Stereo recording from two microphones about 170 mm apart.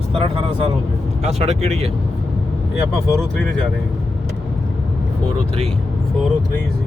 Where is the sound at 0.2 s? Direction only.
35° right (ahead or behind).